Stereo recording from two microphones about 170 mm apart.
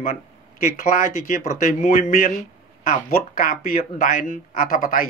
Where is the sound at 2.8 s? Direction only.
55° left (ahead or behind).